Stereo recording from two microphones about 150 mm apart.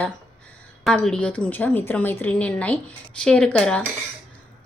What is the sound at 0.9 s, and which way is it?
A woman's voice, 5° left (ahead or behind).